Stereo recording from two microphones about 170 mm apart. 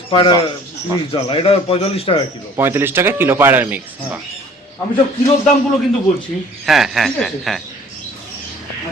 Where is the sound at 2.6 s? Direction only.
15° right (ahead or behind).